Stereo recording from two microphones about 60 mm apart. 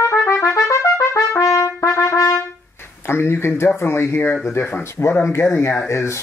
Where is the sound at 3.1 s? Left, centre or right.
Left.